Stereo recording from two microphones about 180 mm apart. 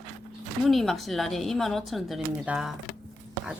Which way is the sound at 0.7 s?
Centre (ahead or behind).